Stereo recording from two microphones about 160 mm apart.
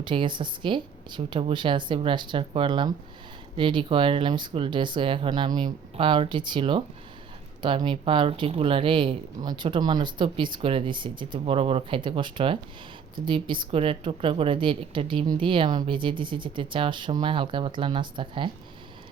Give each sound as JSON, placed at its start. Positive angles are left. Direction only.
{"t": 0.0, "sound": "a woman's voice", "side_deg": -30}